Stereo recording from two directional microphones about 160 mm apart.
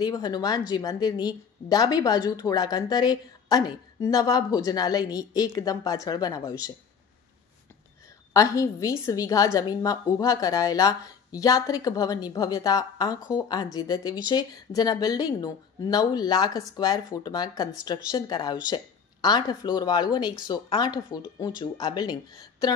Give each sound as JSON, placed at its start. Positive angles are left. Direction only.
{"t": 0.0, "sound": "a woman's voice", "side_deg": 25}
{"t": 8.3, "sound": "a woman's voice", "side_deg": 20}